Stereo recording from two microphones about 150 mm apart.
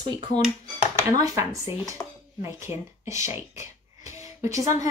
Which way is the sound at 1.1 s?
25° right (ahead or behind).